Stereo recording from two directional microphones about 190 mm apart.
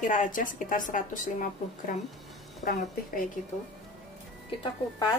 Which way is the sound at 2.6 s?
45° left (ahead or behind).